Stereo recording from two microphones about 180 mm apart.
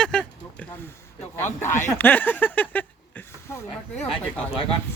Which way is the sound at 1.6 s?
10° left (ahead or behind).